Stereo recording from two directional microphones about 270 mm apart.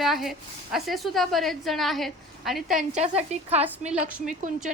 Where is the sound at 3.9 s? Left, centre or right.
Centre.